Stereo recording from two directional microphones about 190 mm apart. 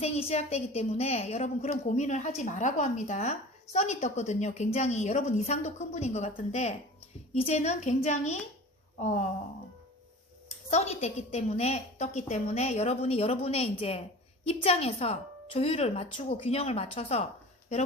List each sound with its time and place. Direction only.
0.0 s a woman's voice: 35° left (ahead or behind)
10.7 s a woman's voice: 35° left (ahead or behind)